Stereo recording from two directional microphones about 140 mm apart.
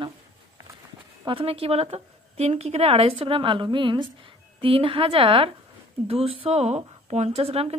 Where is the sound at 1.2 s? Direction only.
40° right (ahead or behind).